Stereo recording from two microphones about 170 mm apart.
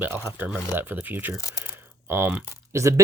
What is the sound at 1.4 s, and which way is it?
Speech, 20° left (ahead or behind).